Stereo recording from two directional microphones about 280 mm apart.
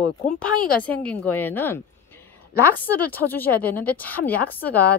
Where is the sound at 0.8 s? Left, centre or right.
Centre.